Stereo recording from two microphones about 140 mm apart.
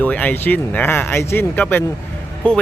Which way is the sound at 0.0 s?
10° left (ahead or behind).